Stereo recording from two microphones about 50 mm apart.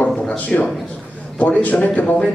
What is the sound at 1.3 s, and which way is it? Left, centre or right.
Speech, left.